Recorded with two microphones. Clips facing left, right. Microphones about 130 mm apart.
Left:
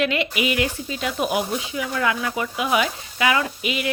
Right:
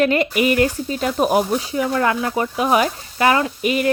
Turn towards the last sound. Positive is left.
turn(degrees=-45)  # may be behind; listen again after turning